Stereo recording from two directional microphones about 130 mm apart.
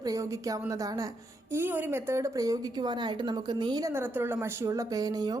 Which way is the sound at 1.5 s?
15° right (ahead or behind).